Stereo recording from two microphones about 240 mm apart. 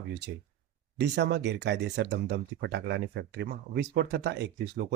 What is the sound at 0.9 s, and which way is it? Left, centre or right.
Speech, right.